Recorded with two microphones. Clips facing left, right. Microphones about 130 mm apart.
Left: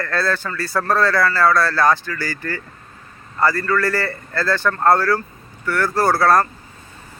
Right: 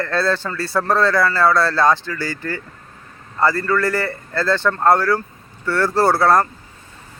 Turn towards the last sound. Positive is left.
turn(degrees=-20)  # may be behind; listen again after turning